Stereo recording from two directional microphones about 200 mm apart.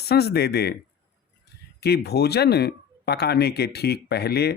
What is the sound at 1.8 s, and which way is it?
Speech, 55° left (ahead or behind).